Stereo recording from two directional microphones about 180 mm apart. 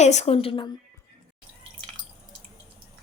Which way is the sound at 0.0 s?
40° left (ahead or behind).